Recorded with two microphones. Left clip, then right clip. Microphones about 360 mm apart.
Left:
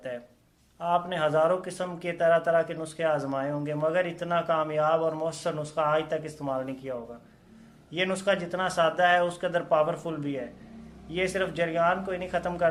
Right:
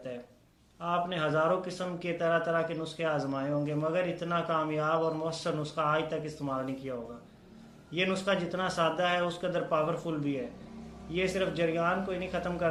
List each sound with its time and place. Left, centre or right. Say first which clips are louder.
0.8 s speech: left 5 dB; centre
7.9 s speech: left 3 dB; centre